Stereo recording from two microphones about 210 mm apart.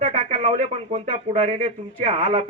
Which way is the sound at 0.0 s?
40° right (ahead or behind).